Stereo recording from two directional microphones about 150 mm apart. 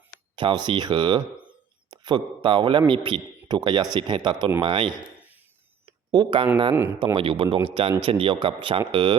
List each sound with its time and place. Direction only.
0.3 s a man's voice: 30° right (ahead or behind)
5.8 s a sound: 30° right (ahead or behind)
7.0 s speech: 35° right (ahead or behind)